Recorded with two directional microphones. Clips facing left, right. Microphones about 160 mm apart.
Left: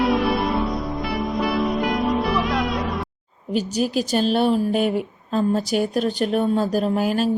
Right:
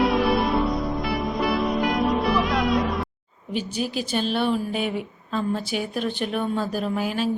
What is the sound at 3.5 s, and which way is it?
A woman's voice, 40° left (ahead or behind).